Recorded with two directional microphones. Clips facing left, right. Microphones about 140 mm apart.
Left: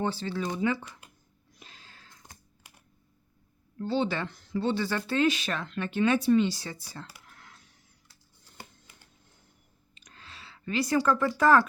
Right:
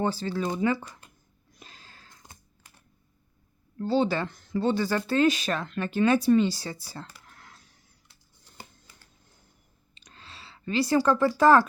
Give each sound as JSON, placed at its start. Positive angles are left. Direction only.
{"t": 0.0, "sound": "speech", "side_deg": -40}
{"t": 1.5, "sound": "a sound", "side_deg": -40}
{"t": 3.8, "sound": "speech", "side_deg": -40}
{"t": 7.3, "sound": "a sound", "side_deg": -40}
{"t": 9.9, "sound": "clicking", "side_deg": -30}
{"t": 11.3, "sound": "speech", "side_deg": -30}